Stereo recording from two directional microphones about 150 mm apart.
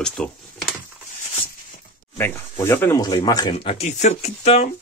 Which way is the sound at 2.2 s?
15° left (ahead or behind).